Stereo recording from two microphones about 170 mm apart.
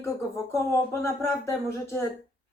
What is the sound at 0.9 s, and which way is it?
Speech, 15° left (ahead or behind).